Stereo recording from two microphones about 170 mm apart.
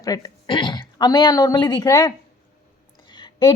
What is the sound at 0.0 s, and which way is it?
Speech, 25° left (ahead or behind).